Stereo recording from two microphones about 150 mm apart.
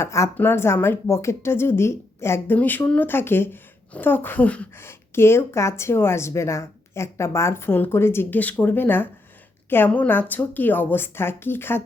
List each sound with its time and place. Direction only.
0.0 s speech: 20° left (ahead or behind)